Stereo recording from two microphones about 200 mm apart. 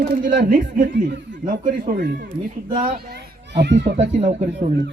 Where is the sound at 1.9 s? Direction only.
60° right (ahead or behind).